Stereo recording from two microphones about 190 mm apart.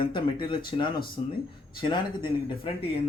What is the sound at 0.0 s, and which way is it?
Speech, 25° left (ahead or behind).